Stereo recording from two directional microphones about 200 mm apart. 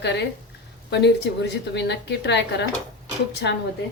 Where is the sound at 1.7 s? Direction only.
60° left (ahead or behind).